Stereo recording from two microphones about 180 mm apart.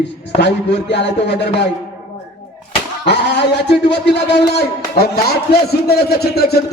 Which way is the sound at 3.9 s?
70° left (ahead or behind).